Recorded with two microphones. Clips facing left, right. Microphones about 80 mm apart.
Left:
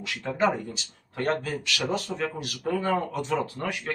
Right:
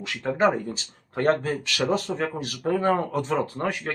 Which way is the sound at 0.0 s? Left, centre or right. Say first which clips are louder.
Right 3 dB; right.